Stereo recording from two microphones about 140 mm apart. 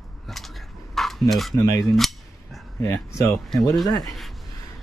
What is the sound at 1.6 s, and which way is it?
Speech, 20° left (ahead or behind).